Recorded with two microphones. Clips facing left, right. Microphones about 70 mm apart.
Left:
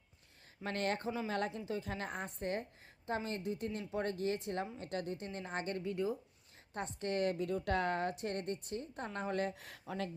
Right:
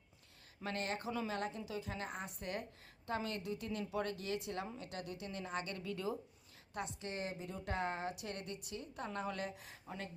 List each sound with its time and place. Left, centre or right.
0.6 s a woman's voice: left
6.7 s a woman's voice: left
8.1 s a woman's voice: left